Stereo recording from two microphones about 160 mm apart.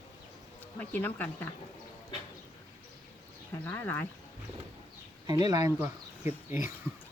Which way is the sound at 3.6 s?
15° left (ahead or behind).